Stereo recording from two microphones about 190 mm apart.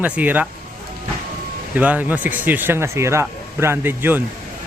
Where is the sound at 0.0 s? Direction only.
10° right (ahead or behind).